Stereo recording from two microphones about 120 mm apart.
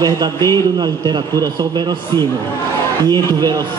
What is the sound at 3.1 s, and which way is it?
Speech, 35° right (ahead or behind).